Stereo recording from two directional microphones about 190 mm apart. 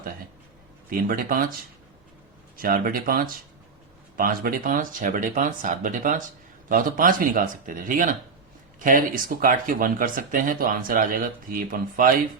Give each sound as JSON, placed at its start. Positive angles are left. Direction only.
{"t": 0.9, "sound": "speech", "side_deg": -45}
{"t": 2.6, "sound": "speech", "side_deg": -45}